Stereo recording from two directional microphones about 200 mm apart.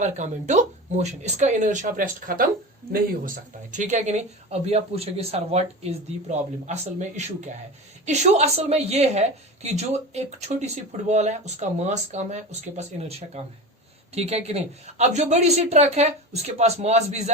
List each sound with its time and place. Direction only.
0.0 s speech: 35° right (ahead or behind)
8.0 s speech: 35° right (ahead or behind)